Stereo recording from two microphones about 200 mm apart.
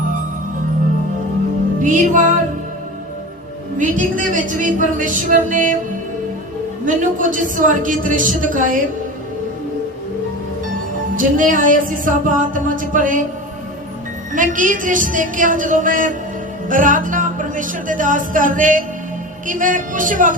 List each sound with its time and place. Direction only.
1.8 s music: 40° right (ahead or behind)
3.8 s music: 40° right (ahead or behind)
6.8 s music: 40° right (ahead or behind)
11.2 s music: 40° right (ahead or behind)
14.3 s music: 40° right (ahead or behind)